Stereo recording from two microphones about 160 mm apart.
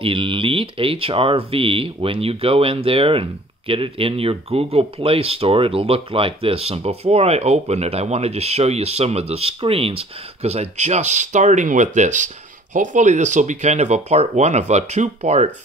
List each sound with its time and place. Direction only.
0.0 s speech: 30° right (ahead or behind)